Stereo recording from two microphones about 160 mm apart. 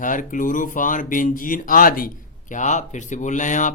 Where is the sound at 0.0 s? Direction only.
55° left (ahead or behind).